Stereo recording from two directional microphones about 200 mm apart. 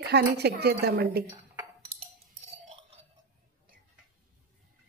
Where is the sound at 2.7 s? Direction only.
30° right (ahead or behind).